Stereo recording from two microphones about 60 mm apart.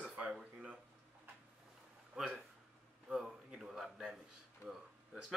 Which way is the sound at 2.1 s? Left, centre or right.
Centre.